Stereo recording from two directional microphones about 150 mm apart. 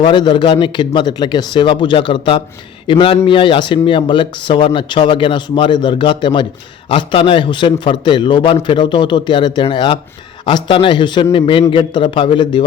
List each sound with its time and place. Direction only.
0.0 s speech: 30° left (ahead or behind)